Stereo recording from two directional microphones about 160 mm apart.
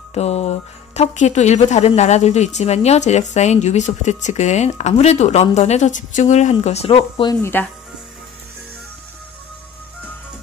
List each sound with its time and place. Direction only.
0.1 s speech: 40° left (ahead or behind)
7.4 s speech: 10° left (ahead or behind)